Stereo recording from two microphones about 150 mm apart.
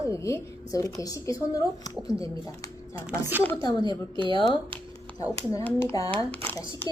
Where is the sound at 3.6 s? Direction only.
30° left (ahead or behind).